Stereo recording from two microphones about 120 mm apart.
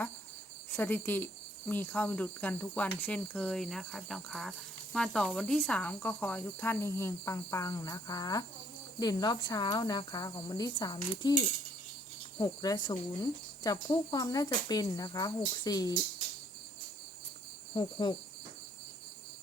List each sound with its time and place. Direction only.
0.7 s speech: 15° left (ahead or behind); by 11.3 s 35° left (ahead or behind)
12.4 s speech: 35° left (ahead or behind)
17.7 s speech: 40° left (ahead or behind)